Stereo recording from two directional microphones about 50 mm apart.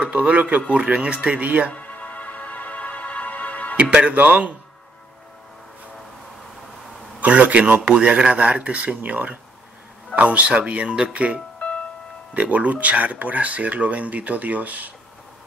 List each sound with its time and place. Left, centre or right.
0.1 s speech: right
1.7 s music: left
3.7 s speech: right
7.2 s speech: right